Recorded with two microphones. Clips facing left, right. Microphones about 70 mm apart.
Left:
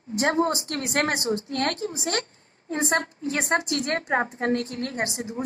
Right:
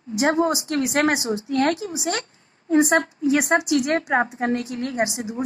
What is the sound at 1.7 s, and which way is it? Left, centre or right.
Speech, right.